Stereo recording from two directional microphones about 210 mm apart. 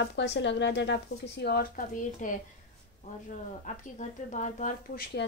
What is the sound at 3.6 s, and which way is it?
Speech, 35° left (ahead or behind).